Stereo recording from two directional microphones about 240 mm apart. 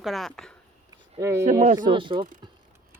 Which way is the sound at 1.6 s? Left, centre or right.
Right.